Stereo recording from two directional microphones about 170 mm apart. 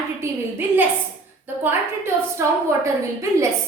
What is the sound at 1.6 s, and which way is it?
A woman's voice, 15° right (ahead or behind).